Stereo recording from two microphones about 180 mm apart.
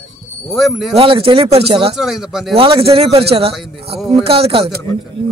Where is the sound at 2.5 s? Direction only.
30° right (ahead or behind).